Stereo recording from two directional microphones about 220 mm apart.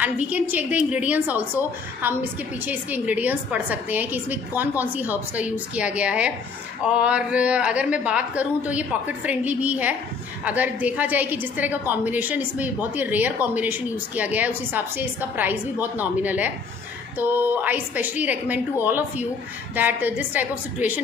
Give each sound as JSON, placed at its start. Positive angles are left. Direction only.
{"t": 0.0, "sound": "a woman's voice", "side_deg": -5}